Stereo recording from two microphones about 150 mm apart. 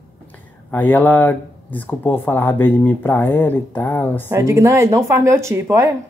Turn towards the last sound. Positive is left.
turn(degrees=-20)  # may be behind; listen again after turning